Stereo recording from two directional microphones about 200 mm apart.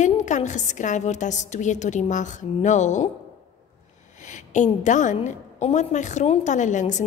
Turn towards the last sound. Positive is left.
turn(degrees=35)  # may be behind; listen again after turning